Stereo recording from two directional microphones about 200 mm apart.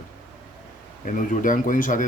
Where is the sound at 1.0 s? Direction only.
40° left (ahead or behind).